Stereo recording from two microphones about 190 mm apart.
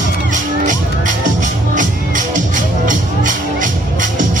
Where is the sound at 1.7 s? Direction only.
40° right (ahead or behind).